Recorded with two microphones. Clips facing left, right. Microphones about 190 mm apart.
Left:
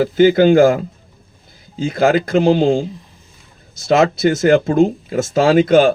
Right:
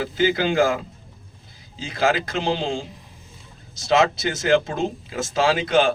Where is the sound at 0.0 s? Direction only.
40° left (ahead or behind).